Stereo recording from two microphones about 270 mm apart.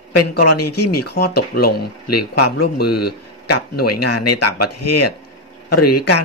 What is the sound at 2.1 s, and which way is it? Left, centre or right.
A man's voice, left.